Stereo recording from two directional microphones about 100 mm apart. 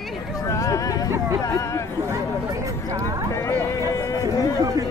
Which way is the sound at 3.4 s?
25° left (ahead or behind).